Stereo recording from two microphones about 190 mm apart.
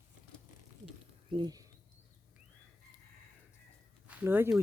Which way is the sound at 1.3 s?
20° right (ahead or behind).